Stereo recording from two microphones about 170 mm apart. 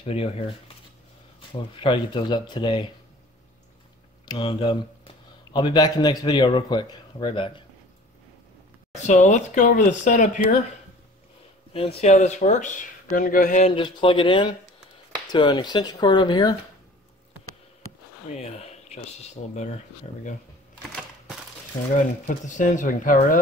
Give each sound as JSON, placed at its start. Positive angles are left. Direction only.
{"t": 0.0, "sound": "speech", "side_deg": 35}
{"t": 4.3, "sound": "speech", "side_deg": 30}
{"t": 8.9, "sound": "speech", "side_deg": 45}
{"t": 11.7, "sound": "speech", "side_deg": 35}
{"t": 18.3, "sound": "speech", "side_deg": 40}
{"t": 21.9, "sound": "speech", "side_deg": 45}